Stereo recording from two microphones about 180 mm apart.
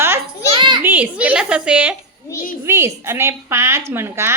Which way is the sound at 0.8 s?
10° right (ahead or behind).